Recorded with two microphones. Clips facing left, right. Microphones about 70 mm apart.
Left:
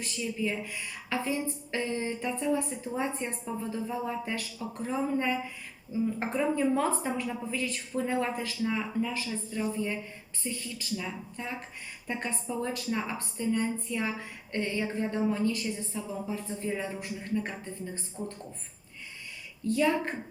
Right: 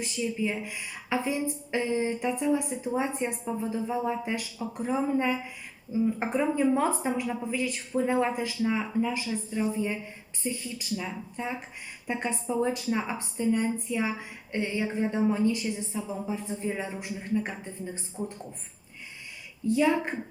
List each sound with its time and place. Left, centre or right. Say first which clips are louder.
0.0 s a woman's voice: right 3 dB; centre
19.6 s a woman's voice: right 2 dB; centre